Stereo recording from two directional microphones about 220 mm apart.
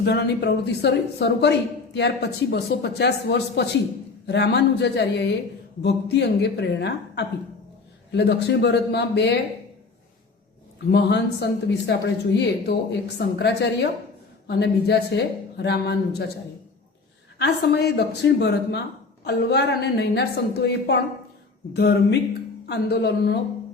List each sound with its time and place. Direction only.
0.0 s a woman's voice: 50° left (ahead or behind)
10.9 s a woman's voice: 50° left (ahead or behind)
17.3 s a woman's voice: 50° left (ahead or behind)